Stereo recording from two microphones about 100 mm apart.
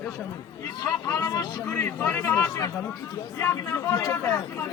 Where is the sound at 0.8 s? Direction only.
35° left (ahead or behind).